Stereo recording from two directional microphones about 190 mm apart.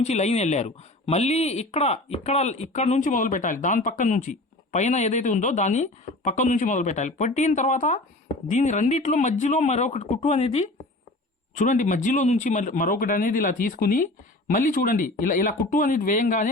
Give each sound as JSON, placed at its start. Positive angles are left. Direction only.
{"t": 0.0, "sound": "speech", "side_deg": 35}